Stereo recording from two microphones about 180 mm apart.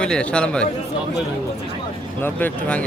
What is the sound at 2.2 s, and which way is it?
Speech, 10° left (ahead or behind).